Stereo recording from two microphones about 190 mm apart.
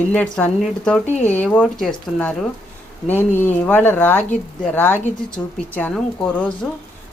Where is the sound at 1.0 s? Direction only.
35° left (ahead or behind).